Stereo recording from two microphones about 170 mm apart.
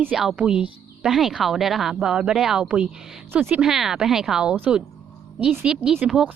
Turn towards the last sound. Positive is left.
turn(degrees=-5)  # may be behind; listen again after turning